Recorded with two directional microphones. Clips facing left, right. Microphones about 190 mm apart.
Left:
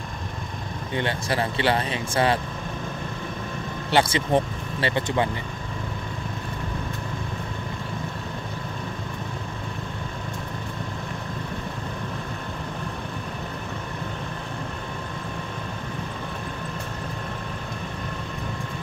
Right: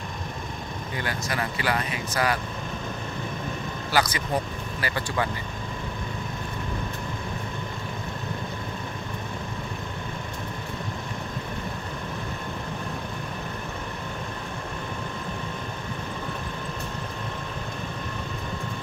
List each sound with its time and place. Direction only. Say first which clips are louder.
0.9 s speech: left 5 dB; 30° left (ahead or behind)
3.9 s speech: left 5 dB; 25° left (ahead or behind)